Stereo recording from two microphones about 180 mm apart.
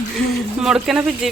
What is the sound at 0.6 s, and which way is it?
Speech, 5° right (ahead or behind).